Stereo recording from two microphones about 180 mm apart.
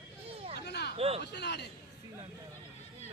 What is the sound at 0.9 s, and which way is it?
Speech, 35° right (ahead or behind).